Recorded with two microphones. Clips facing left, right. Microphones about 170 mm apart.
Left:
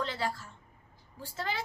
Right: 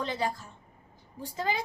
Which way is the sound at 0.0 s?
15° right (ahead or behind).